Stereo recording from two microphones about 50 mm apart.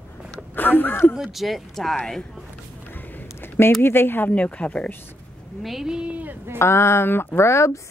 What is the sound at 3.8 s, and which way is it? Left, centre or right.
Speech, left.